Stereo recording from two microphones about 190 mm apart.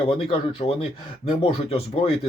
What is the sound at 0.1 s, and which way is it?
Speech, 30° left (ahead or behind).